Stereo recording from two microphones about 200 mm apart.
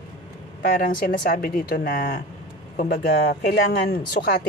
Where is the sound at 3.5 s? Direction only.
50° left (ahead or behind).